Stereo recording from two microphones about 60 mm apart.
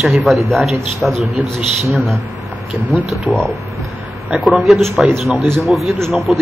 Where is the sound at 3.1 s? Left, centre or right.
Centre.